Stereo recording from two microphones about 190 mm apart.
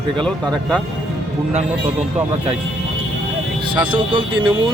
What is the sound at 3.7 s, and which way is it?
Speech, 25° right (ahead or behind).